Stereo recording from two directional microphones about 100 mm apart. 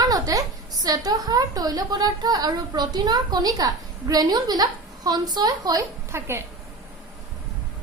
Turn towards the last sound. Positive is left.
turn(degrees=-25)  # may be behind; listen again after turning